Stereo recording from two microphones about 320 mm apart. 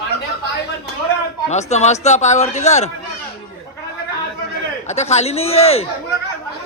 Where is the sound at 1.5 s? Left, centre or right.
Left.